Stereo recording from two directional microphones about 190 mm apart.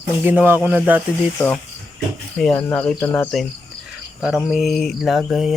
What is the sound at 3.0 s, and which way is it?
Speech, 10° left (ahead or behind).